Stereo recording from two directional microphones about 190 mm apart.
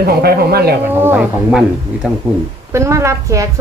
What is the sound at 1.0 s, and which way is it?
A woman's voice, 5° right (ahead or behind).